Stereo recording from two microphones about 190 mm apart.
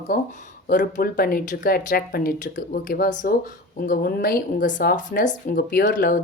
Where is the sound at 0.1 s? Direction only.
50° left (ahead or behind).